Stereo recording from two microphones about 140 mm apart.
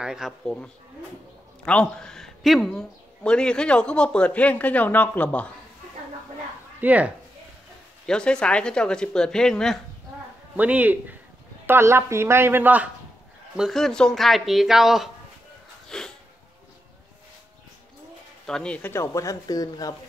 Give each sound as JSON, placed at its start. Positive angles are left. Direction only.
{"t": 0.0, "sound": "speech", "side_deg": -5}
{"t": 1.7, "sound": "speech", "side_deg": 5}
{"t": 6.8, "sound": "speech", "side_deg": -10}
{"t": 8.1, "sound": "speech", "side_deg": 5}
{"t": 10.5, "sound": "speech", "side_deg": -10}
{"t": 13.6, "sound": "speech", "side_deg": 0}
{"t": 15.9, "sound": "a sound", "side_deg": 5}
{"t": 18.5, "sound": "speech", "side_deg": 5}